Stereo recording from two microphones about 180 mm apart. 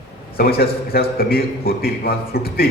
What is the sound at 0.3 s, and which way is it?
A man's voice, 55° left (ahead or behind).